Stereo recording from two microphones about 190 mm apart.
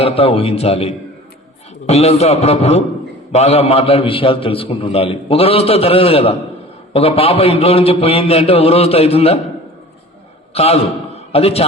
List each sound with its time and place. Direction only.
0.0 s a man's voice: 30° left (ahead or behind)
10.5 s a man's voice: 30° left (ahead or behind)